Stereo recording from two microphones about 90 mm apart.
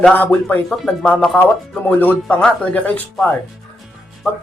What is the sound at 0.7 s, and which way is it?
Speech, centre (ahead or behind).